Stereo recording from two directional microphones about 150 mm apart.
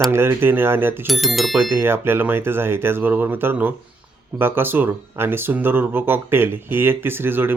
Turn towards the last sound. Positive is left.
turn(degrees=-15)  # may be behind; listen again after turning